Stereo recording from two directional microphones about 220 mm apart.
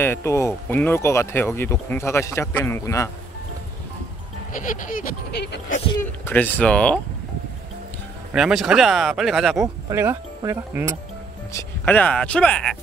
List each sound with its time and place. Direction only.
0.0 s speech: 10° left (ahead or behind)
4.5 s a sound: 35° left (ahead or behind)
5.9 s speech: 10° left (ahead or behind)
8.3 s speech: 5° right (ahead or behind)
9.8 s speech: 15° right (ahead or behind)
11.5 s speech: 10° left (ahead or behind)